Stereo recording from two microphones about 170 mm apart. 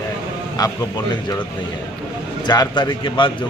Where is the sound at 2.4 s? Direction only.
25° left (ahead or behind).